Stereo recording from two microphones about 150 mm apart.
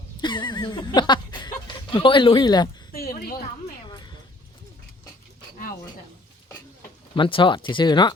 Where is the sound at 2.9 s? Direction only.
80° left.